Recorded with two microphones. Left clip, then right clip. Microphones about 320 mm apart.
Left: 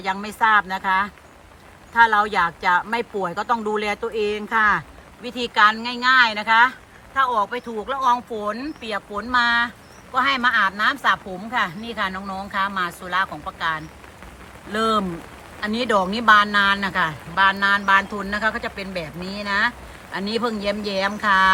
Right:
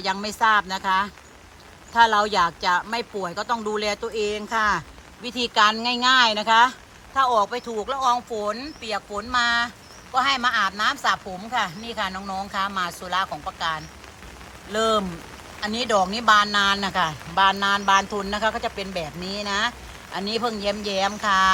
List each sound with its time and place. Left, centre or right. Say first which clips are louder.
0.0 s a woman's voice: left 1 dB; centre